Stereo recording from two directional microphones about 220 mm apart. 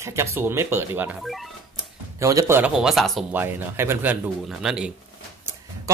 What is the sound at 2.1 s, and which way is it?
Speech, 15° right (ahead or behind).